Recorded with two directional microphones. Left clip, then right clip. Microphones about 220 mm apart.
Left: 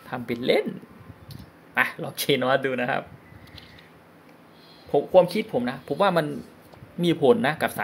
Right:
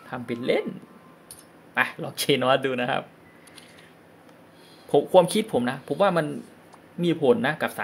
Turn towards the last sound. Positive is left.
turn(degrees=0)  # may be behind; listen again after turning